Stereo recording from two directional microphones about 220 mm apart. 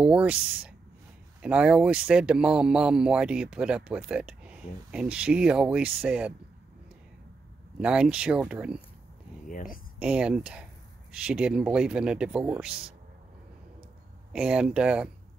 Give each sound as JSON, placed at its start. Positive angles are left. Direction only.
{"t": 0.0, "sound": "speech", "side_deg": -5}
{"t": 7.8, "sound": "speech", "side_deg": -5}
{"t": 9.5, "sound": "speech", "side_deg": 35}
{"t": 9.9, "sound": "speech", "side_deg": -5}
{"t": 14.3, "sound": "speech", "side_deg": -5}